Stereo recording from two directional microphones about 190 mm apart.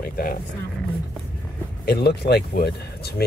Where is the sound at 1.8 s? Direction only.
55° left (ahead or behind).